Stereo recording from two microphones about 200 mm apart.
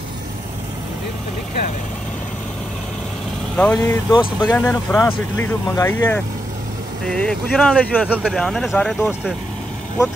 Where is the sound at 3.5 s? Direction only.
10° left (ahead or behind).